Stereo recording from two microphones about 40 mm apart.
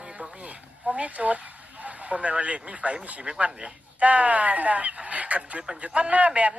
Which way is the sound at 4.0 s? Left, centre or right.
Right.